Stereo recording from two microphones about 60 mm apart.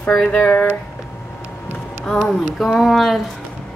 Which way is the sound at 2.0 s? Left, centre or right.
Centre.